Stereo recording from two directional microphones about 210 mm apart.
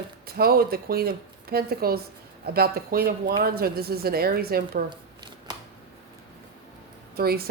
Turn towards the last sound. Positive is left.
turn(degrees=-45)  # may be behind; listen again after turning